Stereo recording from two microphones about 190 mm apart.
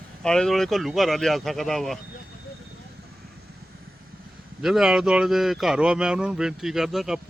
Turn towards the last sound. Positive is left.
turn(degrees=0)  # may be behind; listen again after turning